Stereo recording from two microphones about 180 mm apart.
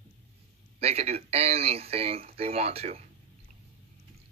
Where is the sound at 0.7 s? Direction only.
35° right (ahead or behind).